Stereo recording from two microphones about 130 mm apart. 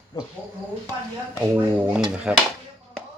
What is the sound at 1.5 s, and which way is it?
Speech, 10° right (ahead or behind).